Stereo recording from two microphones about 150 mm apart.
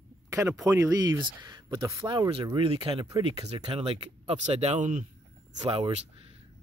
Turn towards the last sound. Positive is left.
turn(degrees=-40)  # may be behind; listen again after turning